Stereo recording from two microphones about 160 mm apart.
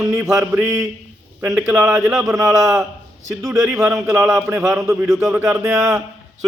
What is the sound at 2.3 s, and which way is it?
Speech, 20° right (ahead or behind).